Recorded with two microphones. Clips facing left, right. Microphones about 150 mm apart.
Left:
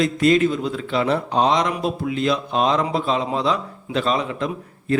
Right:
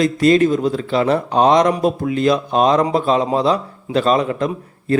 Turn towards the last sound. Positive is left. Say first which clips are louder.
# right 4 dB
turn(degrees=-45)  # may be behind; listen again after turning